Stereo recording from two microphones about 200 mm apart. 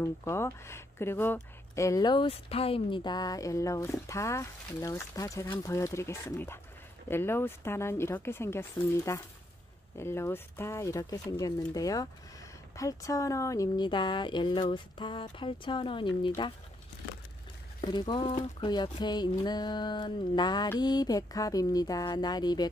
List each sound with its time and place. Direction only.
0.0 s speech: 15° left (ahead or behind)
17.7 s speech: 20° left (ahead or behind)